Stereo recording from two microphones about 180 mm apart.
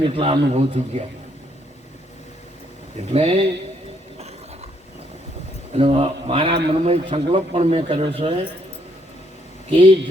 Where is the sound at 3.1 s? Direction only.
30° right (ahead or behind).